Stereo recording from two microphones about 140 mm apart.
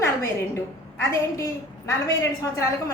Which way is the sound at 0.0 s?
20° left (ahead or behind).